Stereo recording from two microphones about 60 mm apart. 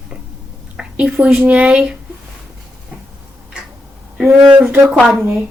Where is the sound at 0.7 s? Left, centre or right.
Centre.